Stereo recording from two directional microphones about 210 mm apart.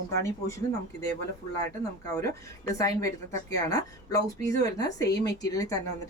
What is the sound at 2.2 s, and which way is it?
A woman's voice, 15° left (ahead or behind).